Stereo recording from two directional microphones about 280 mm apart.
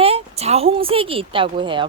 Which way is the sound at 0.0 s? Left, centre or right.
Right.